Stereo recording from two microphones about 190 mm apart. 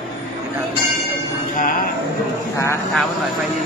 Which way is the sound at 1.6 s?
45° left (ahead or behind).